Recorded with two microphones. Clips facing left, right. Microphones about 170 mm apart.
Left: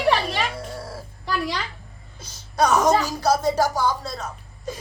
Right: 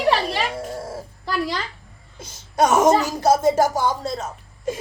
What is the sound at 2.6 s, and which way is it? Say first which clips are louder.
Speech: right 2 dB; 25° right (ahead or behind).